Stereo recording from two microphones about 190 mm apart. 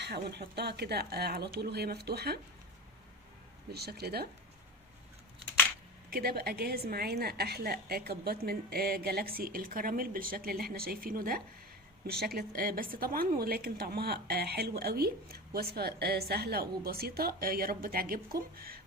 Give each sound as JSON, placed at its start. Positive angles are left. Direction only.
{"t": 0.0, "sound": "a woman's voice", "side_deg": -60}
{"t": 3.7, "sound": "a woman's voice", "side_deg": -55}
{"t": 6.1, "sound": "a woman's voice", "side_deg": -50}